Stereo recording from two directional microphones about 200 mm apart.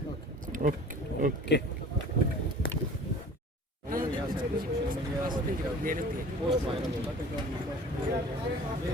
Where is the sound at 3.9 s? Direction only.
45° right (ahead or behind).